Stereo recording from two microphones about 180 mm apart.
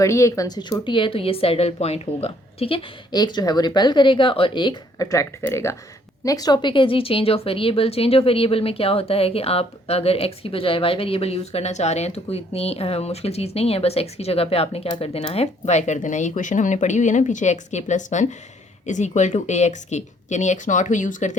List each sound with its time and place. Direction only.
0.0 s speech: 15° left (ahead or behind); by 21.3 s 45° left (ahead or behind)